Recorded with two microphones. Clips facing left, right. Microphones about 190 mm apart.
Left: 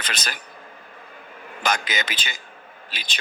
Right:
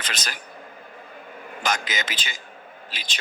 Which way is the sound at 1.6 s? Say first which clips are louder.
Left 2 dB; 60° left (ahead or behind).